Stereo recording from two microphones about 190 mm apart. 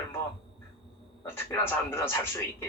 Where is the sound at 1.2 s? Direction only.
10° left (ahead or behind).